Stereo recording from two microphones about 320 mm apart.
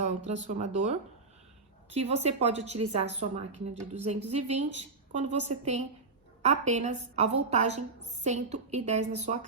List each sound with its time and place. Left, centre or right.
0.4 s a woman's voice: right
2.0 s a woman's voice: centre